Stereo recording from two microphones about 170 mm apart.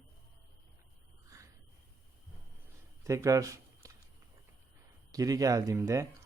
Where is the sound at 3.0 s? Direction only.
20° right (ahead or behind).